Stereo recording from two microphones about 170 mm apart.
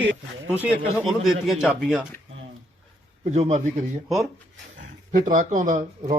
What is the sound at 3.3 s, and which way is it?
Speech, 45° right (ahead or behind).